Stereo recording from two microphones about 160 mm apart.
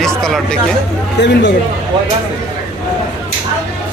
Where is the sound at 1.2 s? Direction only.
90° left.